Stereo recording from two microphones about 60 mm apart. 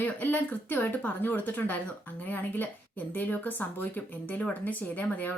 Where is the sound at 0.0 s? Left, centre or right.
Left.